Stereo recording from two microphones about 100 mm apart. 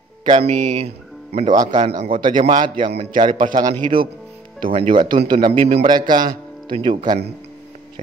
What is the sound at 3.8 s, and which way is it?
Speech, 65° right (ahead or behind).